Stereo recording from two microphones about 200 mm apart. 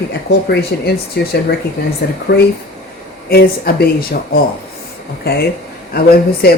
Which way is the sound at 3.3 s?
50° left (ahead or behind).